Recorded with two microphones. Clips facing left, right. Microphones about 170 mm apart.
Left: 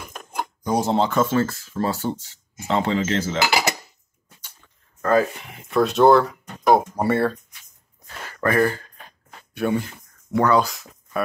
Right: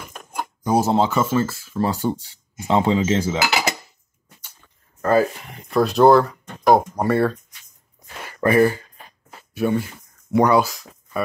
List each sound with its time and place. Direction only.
0.4 s speech: 5° right (ahead or behind)
5.0 s speech: 5° right (ahead or behind)
8.3 s a sound: 15° right (ahead or behind)
9.5 s speech: centre (ahead or behind)
10.3 s speech: 15° right (ahead or behind)
10.6 s speech: centre (ahead or behind)